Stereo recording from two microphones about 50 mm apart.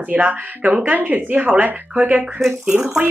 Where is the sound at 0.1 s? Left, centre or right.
Right.